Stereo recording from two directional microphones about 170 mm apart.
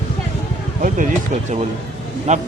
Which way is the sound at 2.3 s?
45° right (ahead or behind).